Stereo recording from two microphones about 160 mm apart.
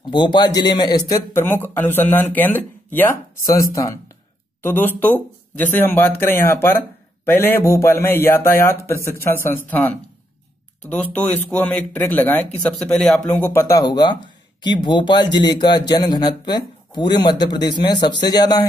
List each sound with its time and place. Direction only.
0.0 s speech: 30° left (ahead or behind); by 13.2 s 5° left (ahead or behind)
13.4 s speech: 15° left (ahead or behind)